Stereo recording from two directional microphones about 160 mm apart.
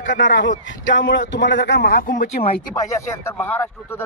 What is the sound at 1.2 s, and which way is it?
A man's voice, 90° left.